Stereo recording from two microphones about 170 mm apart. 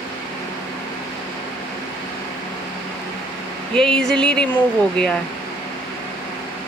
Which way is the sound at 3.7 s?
5° left (ahead or behind).